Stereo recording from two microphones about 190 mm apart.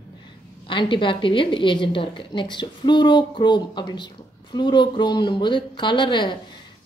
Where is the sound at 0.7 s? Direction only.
25° left (ahead or behind).